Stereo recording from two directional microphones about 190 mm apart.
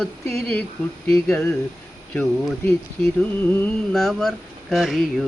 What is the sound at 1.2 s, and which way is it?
Speech, 5° left (ahead or behind).